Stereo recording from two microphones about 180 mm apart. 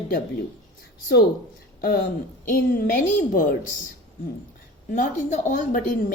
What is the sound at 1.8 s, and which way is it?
A woman's voice, 55° left (ahead or behind).